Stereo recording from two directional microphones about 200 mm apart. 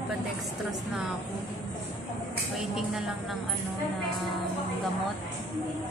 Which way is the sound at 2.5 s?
Centre (ahead or behind).